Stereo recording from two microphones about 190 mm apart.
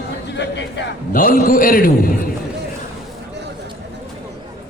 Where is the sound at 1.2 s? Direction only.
50° left (ahead or behind).